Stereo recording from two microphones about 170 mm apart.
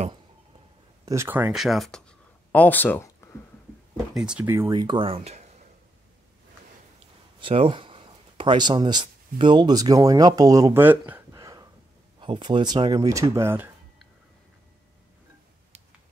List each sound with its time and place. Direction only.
1.0 s speech: 15° right (ahead or behind); by 3.1 s 10° left (ahead or behind)
4.1 s speech: 5° right (ahead or behind); by 5.4 s 35° right (ahead or behind)
7.3 s speech: 35° right (ahead or behind); by 11.2 s 10° right (ahead or behind)
11.3 s a sound: 20° right (ahead or behind)
12.2 s speech: 30° right (ahead or behind)